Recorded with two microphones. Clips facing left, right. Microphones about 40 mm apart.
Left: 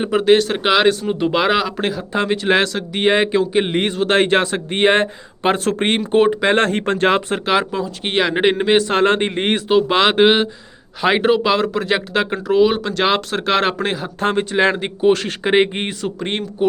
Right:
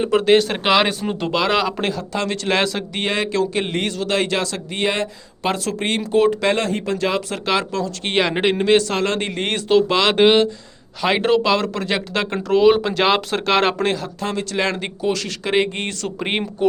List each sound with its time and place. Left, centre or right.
0.1 s speech: centre
1.2 s a man's voice: centre
1.5 s speech: centre
2.0 s speech: centre
2.6 s speech: centre
3.0 s a man's voice: left
6.6 s speech: left
7.4 s speech: centre
8.1 s speech: centre
8.9 s speech: left; by 14.0 s centre
14.2 s speech: left
14.5 s a man's voice: left
15.0 s a man's voice: left; by 16.7 s centre